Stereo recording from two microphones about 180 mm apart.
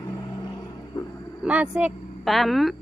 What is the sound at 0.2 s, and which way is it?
Vehicle, 20° left (ahead or behind).